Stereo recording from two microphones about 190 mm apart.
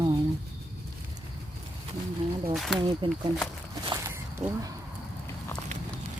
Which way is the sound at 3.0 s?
25° right (ahead or behind).